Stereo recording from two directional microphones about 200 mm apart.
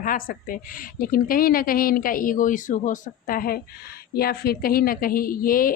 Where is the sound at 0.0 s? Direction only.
45° left (ahead or behind).